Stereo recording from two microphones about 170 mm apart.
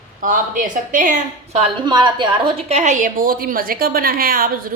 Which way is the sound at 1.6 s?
25° right (ahead or behind).